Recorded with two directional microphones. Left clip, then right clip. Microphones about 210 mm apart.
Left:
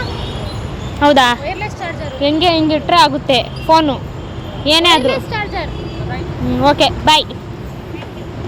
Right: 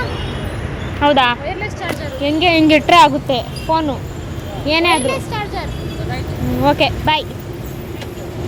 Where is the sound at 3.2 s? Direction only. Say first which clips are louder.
Left 5 dB; 15° left (ahead or behind).